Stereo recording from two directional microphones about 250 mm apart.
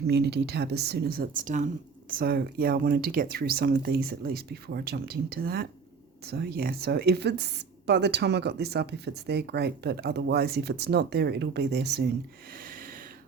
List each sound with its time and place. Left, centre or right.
0.1 s speech: right
12.5 s snort: right